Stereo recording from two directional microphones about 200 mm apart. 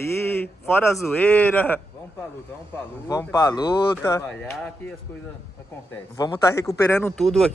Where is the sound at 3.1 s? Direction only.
15° left (ahead or behind).